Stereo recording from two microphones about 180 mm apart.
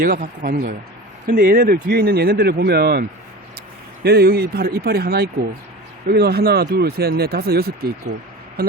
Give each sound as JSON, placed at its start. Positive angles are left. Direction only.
{"t": 0.0, "sound": "speech", "side_deg": -55}
{"t": 4.0, "sound": "speech", "side_deg": -60}